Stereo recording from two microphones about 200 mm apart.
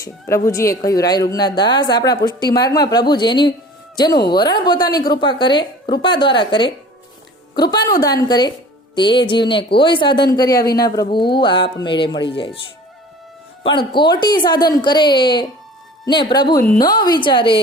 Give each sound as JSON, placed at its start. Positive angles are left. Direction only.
{"t": 0.0, "sound": "a woman's voice", "side_deg": 15}
{"t": 13.7, "sound": "a woman's voice", "side_deg": 25}